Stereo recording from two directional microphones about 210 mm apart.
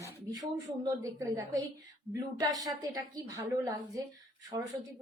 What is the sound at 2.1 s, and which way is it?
A woman's voice, 15° right (ahead or behind).